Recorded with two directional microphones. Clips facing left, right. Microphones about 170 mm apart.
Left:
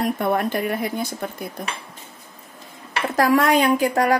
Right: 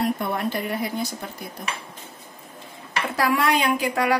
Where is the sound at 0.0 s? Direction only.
50° left (ahead or behind).